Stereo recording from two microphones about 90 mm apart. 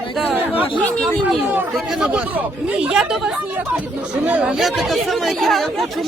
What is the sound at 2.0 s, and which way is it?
Speech, 15° right (ahead or behind).